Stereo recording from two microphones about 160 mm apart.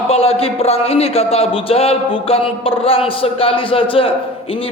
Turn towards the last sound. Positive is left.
turn(degrees=35)  # may be behind; listen again after turning